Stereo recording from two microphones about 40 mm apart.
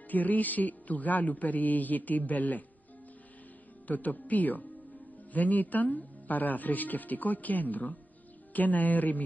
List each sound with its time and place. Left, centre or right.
0.1 s speech: left
3.8 s speech: left